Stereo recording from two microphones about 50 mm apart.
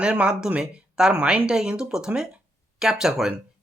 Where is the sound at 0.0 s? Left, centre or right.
Right.